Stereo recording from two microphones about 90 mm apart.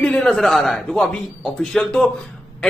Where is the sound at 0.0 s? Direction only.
10° left (ahead or behind).